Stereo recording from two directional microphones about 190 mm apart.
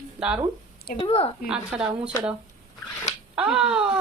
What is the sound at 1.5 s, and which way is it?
Speech, 5° right (ahead or behind).